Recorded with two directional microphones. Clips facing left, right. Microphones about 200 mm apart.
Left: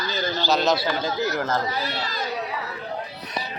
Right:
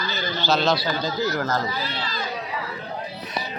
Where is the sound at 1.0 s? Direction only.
25° left (ahead or behind).